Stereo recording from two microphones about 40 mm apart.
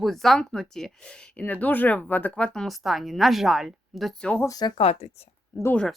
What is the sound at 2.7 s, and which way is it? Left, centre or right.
A woman's voice, centre.